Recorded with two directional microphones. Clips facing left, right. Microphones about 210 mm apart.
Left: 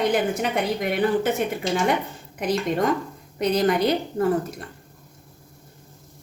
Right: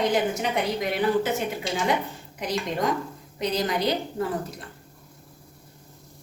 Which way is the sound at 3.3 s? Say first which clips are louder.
Left 6 dB; 55° left (ahead or behind).